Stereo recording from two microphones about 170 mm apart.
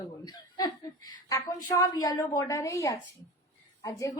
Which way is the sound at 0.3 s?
20° left (ahead or behind).